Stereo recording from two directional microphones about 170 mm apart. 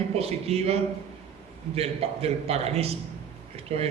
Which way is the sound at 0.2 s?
35° right (ahead or behind).